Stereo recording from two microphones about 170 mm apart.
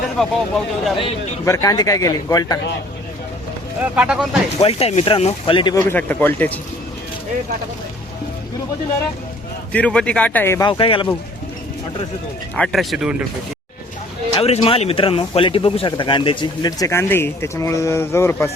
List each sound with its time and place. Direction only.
0.2 s speech: centre (ahead or behind)
1.5 s speech: 20° left (ahead or behind)
3.9 s speech: 5° right (ahead or behind)
4.6 s speech: 35° left (ahead or behind)
5.9 s speech: 10° left (ahead or behind)
9.7 s speech: 5° left (ahead or behind)
10.7 s speech: 30° left (ahead or behind)
12.5 s speech: 5° left (ahead or behind)
14.3 s speech: 35° left (ahead or behind); by 18.5 s 15° left (ahead or behind)